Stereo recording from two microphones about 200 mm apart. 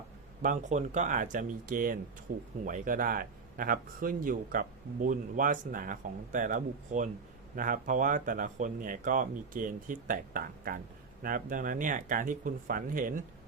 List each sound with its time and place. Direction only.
0.4 s speech: 35° right (ahead or behind)